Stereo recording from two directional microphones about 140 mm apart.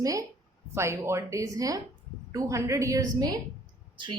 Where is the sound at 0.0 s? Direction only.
25° right (ahead or behind).